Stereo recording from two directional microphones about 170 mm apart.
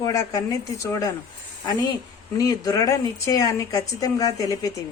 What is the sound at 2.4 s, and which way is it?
A man's voice, 20° left (ahead or behind).